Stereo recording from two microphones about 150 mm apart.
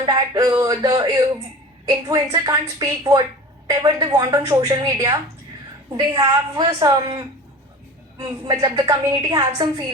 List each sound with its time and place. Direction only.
0.0 s a woman's voice: 25° right (ahead or behind)